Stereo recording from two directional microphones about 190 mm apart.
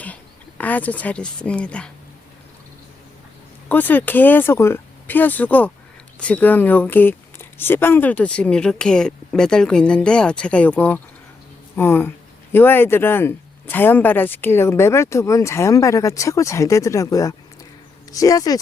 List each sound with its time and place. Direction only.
0.6 s speech: 10° left (ahead or behind)
3.7 s speech: 10° left (ahead or behind)